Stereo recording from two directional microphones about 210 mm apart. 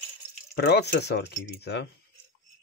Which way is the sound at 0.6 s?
50° left (ahead or behind).